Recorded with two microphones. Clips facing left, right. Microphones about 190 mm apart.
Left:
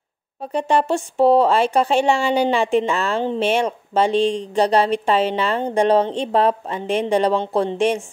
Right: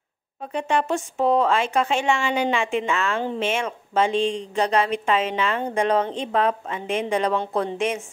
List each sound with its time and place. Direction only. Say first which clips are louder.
0.4 s speech: left 4 dB; 35° left (ahead or behind)